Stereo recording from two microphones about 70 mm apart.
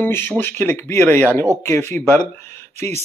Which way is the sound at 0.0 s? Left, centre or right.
Left.